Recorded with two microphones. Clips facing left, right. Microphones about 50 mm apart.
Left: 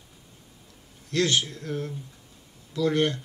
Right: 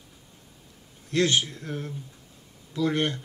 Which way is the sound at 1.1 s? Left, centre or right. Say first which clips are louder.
Right 1 dB; right.